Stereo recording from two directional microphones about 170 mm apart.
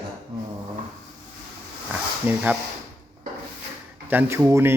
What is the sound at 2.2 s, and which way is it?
Speech, 10° right (ahead or behind).